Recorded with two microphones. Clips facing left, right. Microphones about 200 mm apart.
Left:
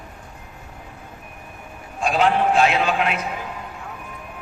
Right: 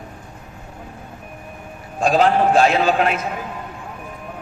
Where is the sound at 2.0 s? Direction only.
35° right (ahead or behind).